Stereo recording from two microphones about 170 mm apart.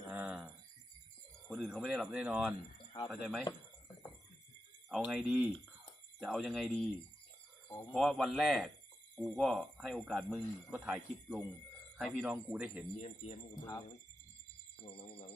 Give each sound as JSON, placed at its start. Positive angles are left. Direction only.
{"t": 0.1, "sound": "a sound", "side_deg": -5}
{"t": 1.5, "sound": "speech", "side_deg": 0}
{"t": 4.9, "sound": "speech", "side_deg": 0}
{"t": 7.9, "sound": "speech", "side_deg": 0}
{"t": 13.0, "sound": "speech", "side_deg": 40}
{"t": 14.8, "sound": "speech", "side_deg": 35}